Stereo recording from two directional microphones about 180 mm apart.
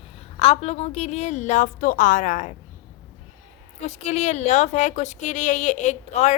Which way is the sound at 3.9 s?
40° left (ahead or behind).